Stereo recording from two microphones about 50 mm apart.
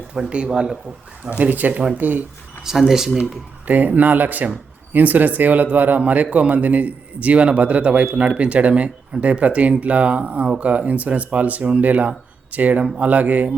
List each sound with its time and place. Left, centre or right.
0.3 s speech: centre
1.3 s speech: right
2.8 s speech: centre
3.7 s speech: right